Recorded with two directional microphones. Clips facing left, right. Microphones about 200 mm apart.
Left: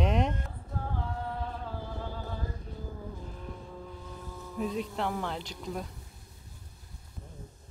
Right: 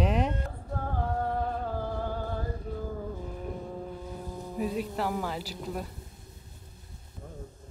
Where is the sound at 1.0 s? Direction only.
50° right (ahead or behind).